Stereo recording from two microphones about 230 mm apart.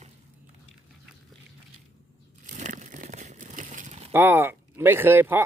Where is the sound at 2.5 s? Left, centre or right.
Right.